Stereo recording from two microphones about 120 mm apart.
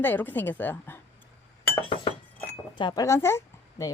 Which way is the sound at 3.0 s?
20° left (ahead or behind).